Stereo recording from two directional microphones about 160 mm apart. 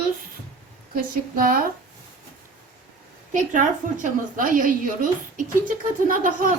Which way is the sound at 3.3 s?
50° right (ahead or behind).